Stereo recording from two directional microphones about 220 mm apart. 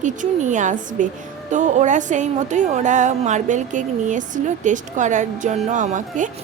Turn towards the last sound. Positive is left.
turn(degrees=-35)  # may be behind; listen again after turning